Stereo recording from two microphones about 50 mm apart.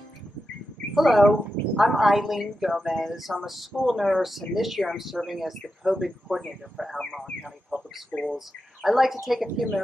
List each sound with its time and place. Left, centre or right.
0.9 s a woman's voice: centre
7.1 s speech: centre
7.7 s a sound: right
8.1 s speech: left
8.8 s a woman's voice: centre